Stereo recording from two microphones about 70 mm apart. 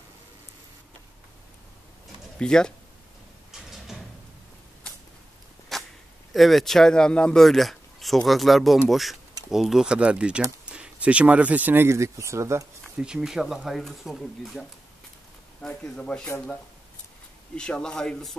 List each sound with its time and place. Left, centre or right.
2.3 s speech: centre
3.7 s sliding door: centre
5.7 s whip: centre
6.3 s speech: centre
7.3 s speech: centre; by 12.6 s right
12.9 s speech: centre
15.6 s speech: centre
17.6 s speech: centre